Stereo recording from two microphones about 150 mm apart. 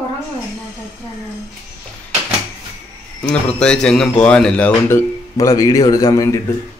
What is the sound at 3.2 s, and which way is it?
Speech, 5° left (ahead or behind).